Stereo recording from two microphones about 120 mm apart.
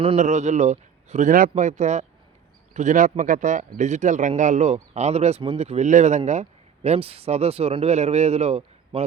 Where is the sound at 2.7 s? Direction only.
85° right.